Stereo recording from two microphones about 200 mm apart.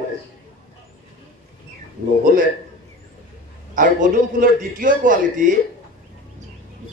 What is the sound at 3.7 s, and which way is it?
A man's voice, 40° right (ahead or behind).